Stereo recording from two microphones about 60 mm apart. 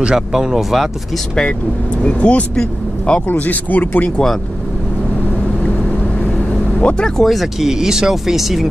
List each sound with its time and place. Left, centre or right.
0.0 s speech: centre
2.0 s speech: left
2.5 s speech: centre
3.3 s speech: left
5.7 s vehicle: centre
7.2 s speech: centre